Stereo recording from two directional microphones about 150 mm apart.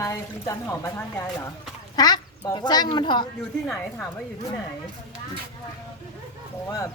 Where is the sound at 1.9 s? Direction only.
25° left (ahead or behind).